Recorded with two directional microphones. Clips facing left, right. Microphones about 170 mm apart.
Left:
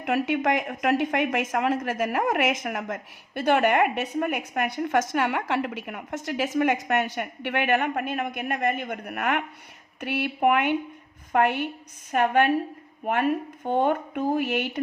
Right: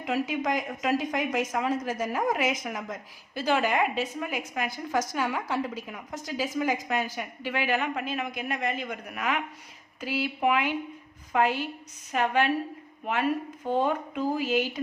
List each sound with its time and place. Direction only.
0.0 s a woman's voice: 65° left (ahead or behind)